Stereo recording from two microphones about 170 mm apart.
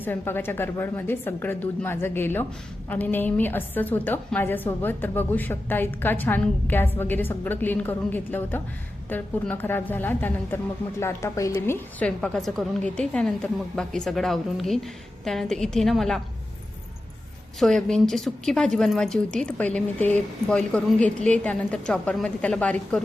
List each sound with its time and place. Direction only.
0.0 s a woman's voice: 10° left (ahead or behind)
17.6 s a woman's voice: 5° left (ahead or behind)